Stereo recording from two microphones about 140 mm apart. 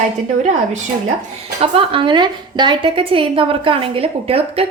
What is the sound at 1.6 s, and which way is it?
A woman's voice, 40° right (ahead or behind).